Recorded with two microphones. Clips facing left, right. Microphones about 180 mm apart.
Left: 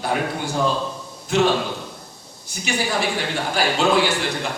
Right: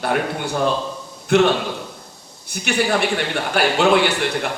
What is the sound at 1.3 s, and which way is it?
A man's voice, 60° right (ahead or behind).